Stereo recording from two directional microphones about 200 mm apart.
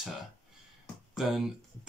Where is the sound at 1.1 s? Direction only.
5° right (ahead or behind).